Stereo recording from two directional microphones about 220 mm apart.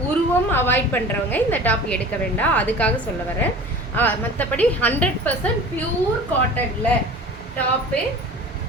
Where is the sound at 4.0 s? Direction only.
5° left (ahead or behind).